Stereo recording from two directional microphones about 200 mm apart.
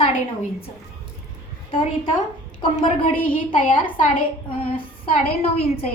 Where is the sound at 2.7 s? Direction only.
35° left (ahead or behind).